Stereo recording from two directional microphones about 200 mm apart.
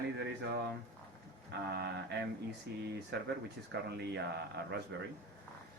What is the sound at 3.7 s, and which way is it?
Speech, 55° right (ahead or behind).